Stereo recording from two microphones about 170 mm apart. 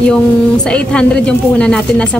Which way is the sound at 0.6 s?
5° left (ahead or behind).